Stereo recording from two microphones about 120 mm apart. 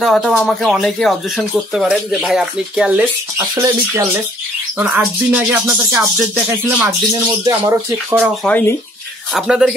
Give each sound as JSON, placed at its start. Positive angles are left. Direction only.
{"t": 0.0, "sound": "speech", "side_deg": 0}
{"t": 3.3, "sound": "speech", "side_deg": -25}
{"t": 4.7, "sound": "speech", "side_deg": -15}
{"t": 7.4, "sound": "speech", "side_deg": -25}
{"t": 8.5, "sound": "speech", "side_deg": 15}
{"t": 9.3, "sound": "speech", "side_deg": 0}